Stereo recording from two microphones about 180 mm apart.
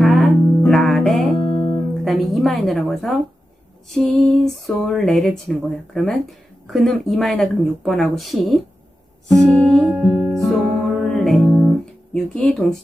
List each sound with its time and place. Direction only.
0.0 s music: centre (ahead or behind)
1.4 s music: 30° left (ahead or behind)
2.0 s a sound: centre (ahead or behind)
3.9 s speech: centre (ahead or behind)
10.1 s music: centre (ahead or behind)